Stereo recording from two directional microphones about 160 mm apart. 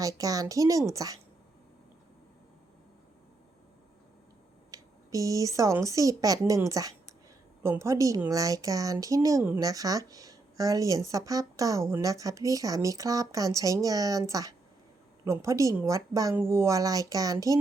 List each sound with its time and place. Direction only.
0.0 s speech: 20° right (ahead or behind)
4.7 s speech: 20° right (ahead or behind)